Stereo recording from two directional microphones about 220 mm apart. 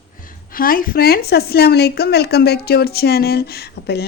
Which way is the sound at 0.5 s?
40° left (ahead or behind).